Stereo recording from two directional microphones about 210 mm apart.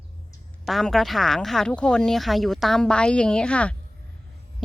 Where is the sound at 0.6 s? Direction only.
Centre (ahead or behind).